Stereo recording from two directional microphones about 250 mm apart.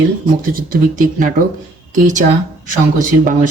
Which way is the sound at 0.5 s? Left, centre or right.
Right.